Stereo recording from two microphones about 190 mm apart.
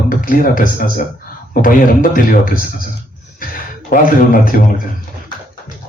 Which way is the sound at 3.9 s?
45° left (ahead or behind).